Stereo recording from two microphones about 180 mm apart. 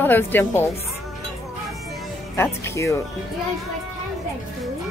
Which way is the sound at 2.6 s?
15° left (ahead or behind).